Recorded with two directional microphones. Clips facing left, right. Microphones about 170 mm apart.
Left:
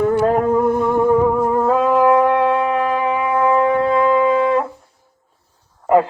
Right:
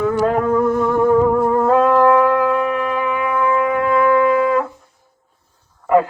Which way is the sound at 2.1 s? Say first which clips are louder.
Even; 25° left (ahead or behind).